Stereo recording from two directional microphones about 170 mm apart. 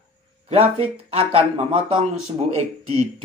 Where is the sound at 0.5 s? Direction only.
35° right (ahead or behind).